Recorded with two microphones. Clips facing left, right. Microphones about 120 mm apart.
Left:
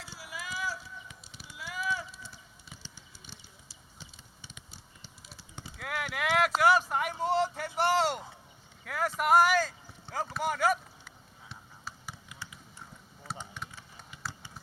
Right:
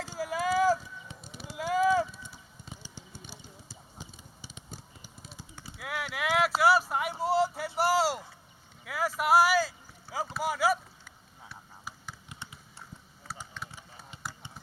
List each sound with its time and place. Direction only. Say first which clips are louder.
0.0 s clip-clop: right 12 dB; 45° right (ahead or behind)
5.7 s clip-clop: even; 5° right (ahead or behind)
6.1 s a sound: even; centre (ahead or behind)
10.3 s speech: right 1 dB; 5° right (ahead or behind)
12.3 s a sound: right 1 dB; 30° right (ahead or behind)
13.6 s typing: even; 10° left (ahead or behind)